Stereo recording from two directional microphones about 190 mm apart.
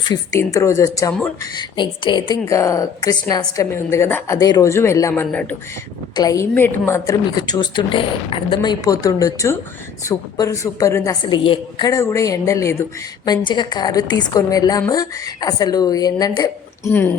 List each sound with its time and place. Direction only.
0.1 s a woman's voice: 15° left (ahead or behind)
6.1 s a woman's voice: 20° left (ahead or behind)